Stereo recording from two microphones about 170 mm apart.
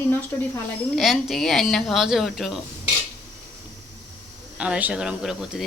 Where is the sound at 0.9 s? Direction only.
Centre (ahead or behind).